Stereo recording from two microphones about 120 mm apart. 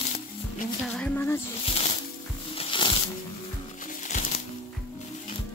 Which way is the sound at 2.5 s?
50° left (ahead or behind).